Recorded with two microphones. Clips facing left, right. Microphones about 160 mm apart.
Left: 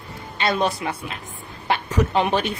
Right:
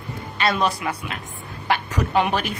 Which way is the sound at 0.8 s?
30° left (ahead or behind).